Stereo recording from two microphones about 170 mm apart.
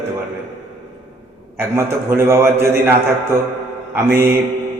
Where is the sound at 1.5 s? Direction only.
15° right (ahead or behind).